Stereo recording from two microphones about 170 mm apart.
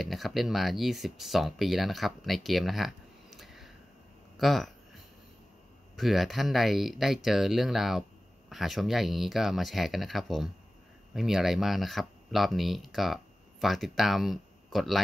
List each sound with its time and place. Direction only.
0.0 s speech: centre (ahead or behind)
4.4 s a sound: centre (ahead or behind)
5.9 s speech: centre (ahead or behind)